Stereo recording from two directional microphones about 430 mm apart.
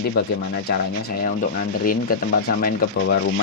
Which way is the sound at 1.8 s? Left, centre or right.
Centre.